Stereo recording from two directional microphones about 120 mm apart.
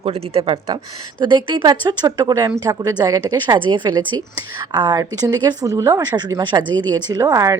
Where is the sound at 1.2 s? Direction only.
40° right (ahead or behind).